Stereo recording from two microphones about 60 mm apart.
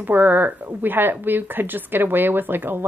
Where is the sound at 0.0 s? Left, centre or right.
Right.